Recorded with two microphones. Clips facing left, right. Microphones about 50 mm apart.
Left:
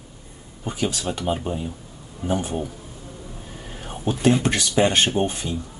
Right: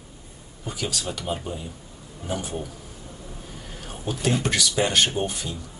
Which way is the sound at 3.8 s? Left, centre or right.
Left.